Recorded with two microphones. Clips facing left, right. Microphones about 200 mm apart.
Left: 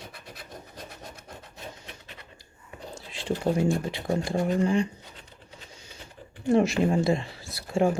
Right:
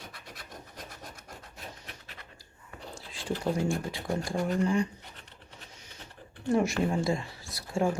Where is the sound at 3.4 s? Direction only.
25° left (ahead or behind).